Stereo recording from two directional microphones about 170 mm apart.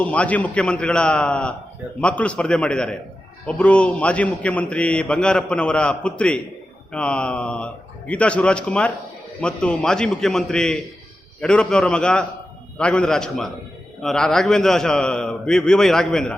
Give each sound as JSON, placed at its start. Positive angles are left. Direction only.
{"t": 0.0, "sound": "a man's voice", "side_deg": 10}